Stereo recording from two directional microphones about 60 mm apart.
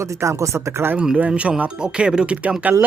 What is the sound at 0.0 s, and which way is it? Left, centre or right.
Speech, right.